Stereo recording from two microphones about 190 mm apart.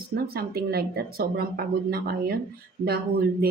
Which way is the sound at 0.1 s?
55° right (ahead or behind).